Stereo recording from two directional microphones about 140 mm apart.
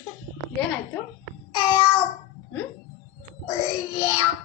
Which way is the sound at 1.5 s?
35° left (ahead or behind).